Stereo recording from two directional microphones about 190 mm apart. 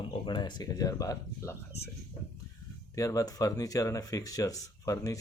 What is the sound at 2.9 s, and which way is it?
Speech, 15° left (ahead or behind).